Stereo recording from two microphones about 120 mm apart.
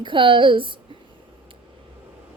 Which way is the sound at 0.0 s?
40° right (ahead or behind).